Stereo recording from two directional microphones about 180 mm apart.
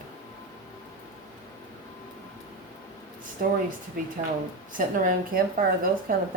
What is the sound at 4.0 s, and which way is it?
A woman's voice, 55° right (ahead or behind).